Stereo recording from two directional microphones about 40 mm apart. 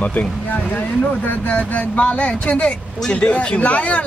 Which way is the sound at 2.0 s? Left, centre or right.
Left.